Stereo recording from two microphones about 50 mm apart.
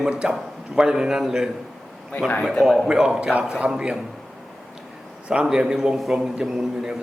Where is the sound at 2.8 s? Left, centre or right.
Centre.